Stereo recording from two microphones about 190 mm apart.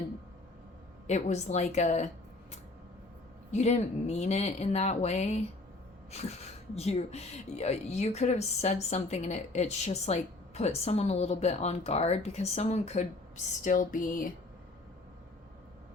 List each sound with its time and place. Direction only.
1.0 s speech: 35° left (ahead or behind)
3.5 s speech: 35° left (ahead or behind)
6.7 s speech: 35° left (ahead or behind)